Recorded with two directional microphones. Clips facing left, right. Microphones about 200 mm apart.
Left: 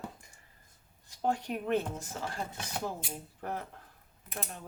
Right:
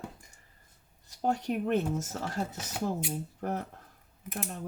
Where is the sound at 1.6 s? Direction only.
45° right (ahead or behind).